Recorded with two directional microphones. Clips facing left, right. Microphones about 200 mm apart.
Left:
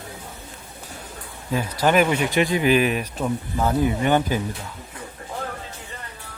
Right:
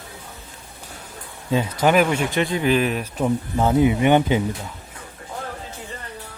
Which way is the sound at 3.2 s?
20° right (ahead or behind).